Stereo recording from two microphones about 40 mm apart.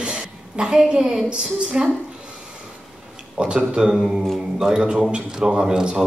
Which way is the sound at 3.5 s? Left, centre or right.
Centre.